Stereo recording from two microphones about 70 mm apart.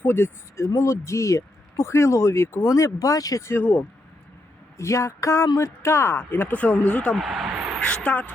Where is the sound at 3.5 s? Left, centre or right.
Left.